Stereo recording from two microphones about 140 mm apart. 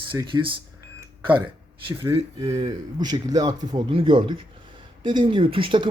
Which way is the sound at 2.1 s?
45° right (ahead or behind).